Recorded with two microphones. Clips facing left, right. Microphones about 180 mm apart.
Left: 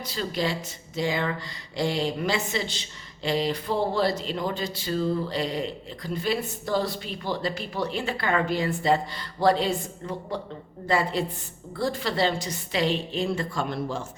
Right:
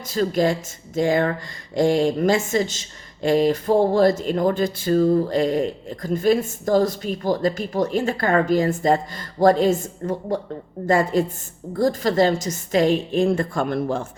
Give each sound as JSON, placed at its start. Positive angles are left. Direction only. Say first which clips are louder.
{"t": 0.0, "sound": "speech", "louder": "right 8 dB", "side_deg": -45}